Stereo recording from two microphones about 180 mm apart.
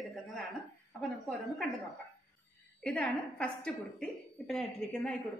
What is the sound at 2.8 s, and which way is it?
A woman's voice, 5° left (ahead or behind).